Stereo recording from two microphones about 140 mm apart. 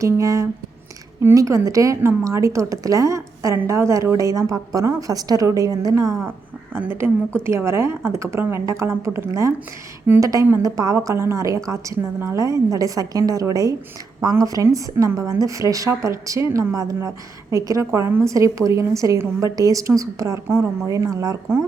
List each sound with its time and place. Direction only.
0.0 s a woman's voice: 25° right (ahead or behind)